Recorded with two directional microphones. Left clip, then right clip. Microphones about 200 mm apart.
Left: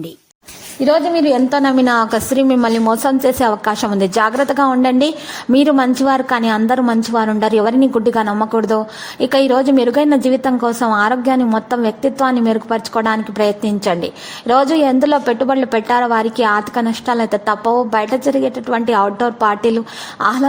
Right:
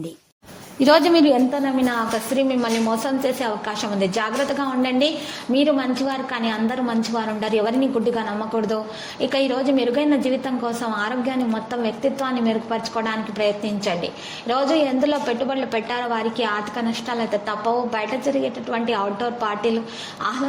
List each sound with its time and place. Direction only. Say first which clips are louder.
0.8 s a woman's voice: left 2 dB; 5° right (ahead or behind)
1.5 s a woman's voice: left 8 dB; 35° left (ahead or behind)